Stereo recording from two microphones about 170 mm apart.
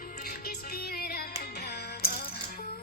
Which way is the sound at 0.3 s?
60° left (ahead or behind).